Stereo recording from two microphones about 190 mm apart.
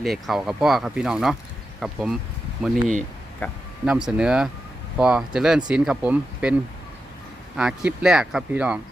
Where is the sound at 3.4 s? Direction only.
10° left (ahead or behind).